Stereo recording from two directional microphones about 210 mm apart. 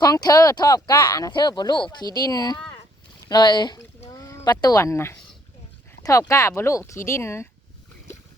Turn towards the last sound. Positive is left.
turn(degrees=10)  # may be behind; listen again after turning